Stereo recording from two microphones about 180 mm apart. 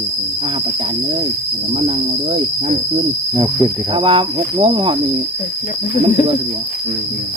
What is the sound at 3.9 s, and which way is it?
Cricket, 30° right (ahead or behind).